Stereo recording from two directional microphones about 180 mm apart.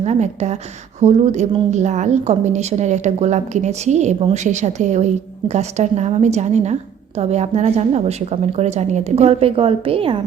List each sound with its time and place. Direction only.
0.0 s a woman's voice: 40° right (ahead or behind)